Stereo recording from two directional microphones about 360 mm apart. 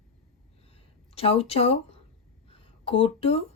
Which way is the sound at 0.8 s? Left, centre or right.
Centre.